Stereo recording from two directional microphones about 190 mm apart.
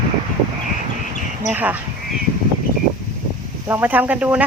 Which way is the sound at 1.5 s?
10° right (ahead or behind).